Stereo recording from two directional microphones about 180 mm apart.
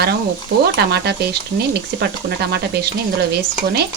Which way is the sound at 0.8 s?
65° right (ahead or behind).